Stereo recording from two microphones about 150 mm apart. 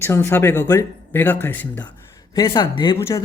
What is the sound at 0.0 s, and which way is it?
Speech, 15° left (ahead or behind).